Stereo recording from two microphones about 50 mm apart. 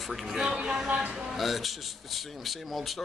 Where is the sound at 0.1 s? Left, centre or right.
Centre.